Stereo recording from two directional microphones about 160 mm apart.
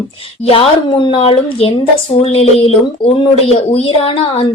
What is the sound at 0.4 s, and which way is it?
A woman's voice, 35° left (ahead or behind).